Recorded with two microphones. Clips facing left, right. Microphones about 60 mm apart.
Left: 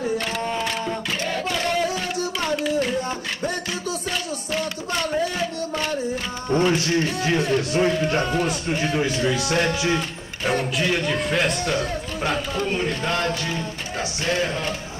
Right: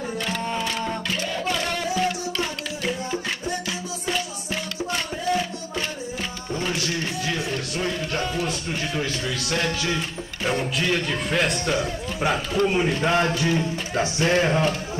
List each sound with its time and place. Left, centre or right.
6.5 s speech: left; by 10.0 s centre
10.4 s a man's voice: centre
14.2 s speech: right